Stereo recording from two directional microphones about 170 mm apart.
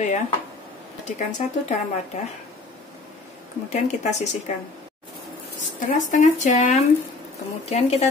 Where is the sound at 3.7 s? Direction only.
40° left (ahead or behind).